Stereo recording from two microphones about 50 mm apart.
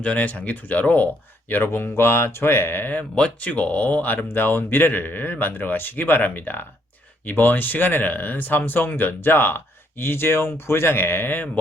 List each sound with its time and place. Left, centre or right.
0.0 s speech: left
2.9 s speech: left
4.3 s speech: left